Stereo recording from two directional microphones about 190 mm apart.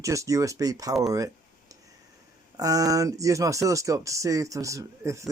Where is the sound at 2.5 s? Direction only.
20° right (ahead or behind).